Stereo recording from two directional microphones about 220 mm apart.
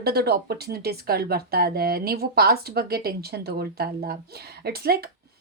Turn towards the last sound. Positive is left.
turn(degrees=-45)  # may be behind; listen again after turning